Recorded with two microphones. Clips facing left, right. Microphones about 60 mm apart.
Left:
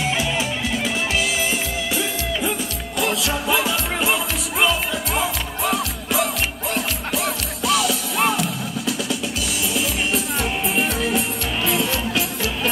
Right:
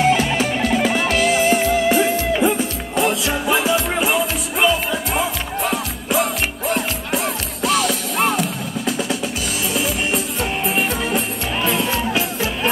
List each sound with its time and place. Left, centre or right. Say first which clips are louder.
0.2 s music: right 4 dB; right
7.6 s music: right 2 dB; right
11.6 s music: right 2 dB; right